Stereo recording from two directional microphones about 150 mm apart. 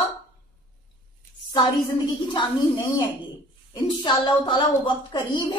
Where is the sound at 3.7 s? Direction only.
30° left (ahead or behind).